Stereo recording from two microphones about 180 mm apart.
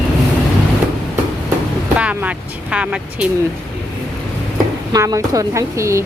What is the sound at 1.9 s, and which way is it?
Vehicle, 5° right (ahead or behind).